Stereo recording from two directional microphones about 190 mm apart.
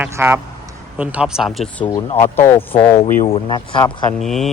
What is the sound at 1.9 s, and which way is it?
Speech, 10° left (ahead or behind).